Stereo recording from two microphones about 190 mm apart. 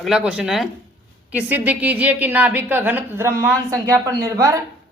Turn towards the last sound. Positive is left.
turn(degrees=-15)  # may be behind; listen again after turning